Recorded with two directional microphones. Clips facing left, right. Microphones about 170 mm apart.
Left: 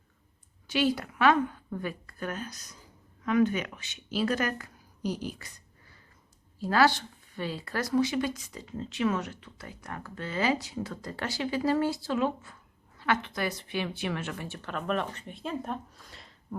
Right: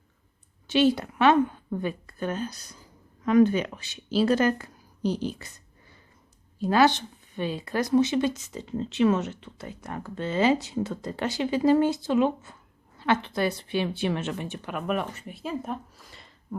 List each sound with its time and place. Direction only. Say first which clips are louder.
0.7 s a woman's voice: right 6 dB; 25° right (ahead or behind)
6.6 s speech: right 3 dB; 20° right (ahead or behind); by 16.6 s centre (ahead or behind)